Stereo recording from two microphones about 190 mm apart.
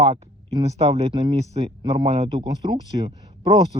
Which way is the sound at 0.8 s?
35° right (ahead or behind).